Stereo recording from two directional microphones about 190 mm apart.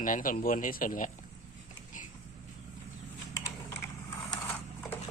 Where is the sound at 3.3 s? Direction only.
15° left (ahead or behind).